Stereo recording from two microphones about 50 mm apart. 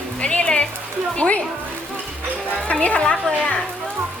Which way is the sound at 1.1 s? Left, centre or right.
Left.